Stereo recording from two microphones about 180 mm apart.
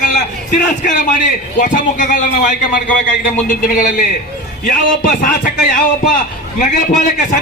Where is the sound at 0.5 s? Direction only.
45° left (ahead or behind).